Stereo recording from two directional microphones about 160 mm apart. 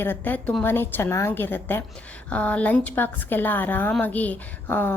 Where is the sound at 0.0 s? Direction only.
10° left (ahead or behind).